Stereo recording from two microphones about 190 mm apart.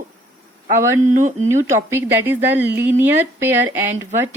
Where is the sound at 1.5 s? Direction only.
15° right (ahead or behind).